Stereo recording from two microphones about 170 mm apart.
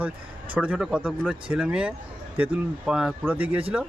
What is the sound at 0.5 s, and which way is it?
Speech, 10° right (ahead or behind).